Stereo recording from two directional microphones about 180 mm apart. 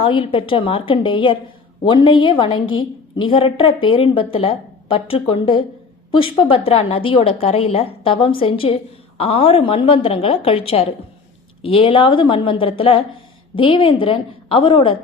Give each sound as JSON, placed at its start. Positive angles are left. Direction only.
{"t": 0.0, "sound": "a woman's voice", "side_deg": 30}